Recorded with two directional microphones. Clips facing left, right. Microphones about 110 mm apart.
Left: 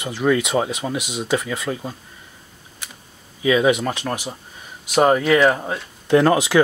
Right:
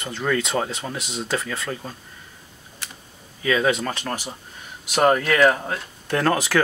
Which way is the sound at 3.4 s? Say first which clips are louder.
Left 4 dB; 15° left (ahead or behind).